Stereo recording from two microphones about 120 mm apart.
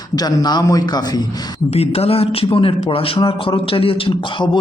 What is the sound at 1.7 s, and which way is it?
Speech, 55° left (ahead or behind).